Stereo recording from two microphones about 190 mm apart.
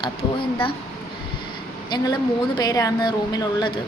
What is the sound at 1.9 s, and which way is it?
A woman's voice, 20° left (ahead or behind).